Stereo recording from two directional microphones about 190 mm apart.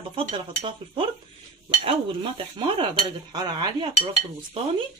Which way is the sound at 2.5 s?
25° right (ahead or behind).